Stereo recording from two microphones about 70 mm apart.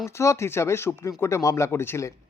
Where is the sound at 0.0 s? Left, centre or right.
Left.